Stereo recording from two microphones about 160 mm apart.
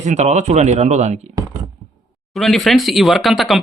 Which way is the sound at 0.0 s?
45° right (ahead or behind).